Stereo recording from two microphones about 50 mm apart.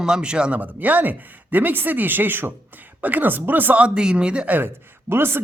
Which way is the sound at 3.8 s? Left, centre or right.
Centre.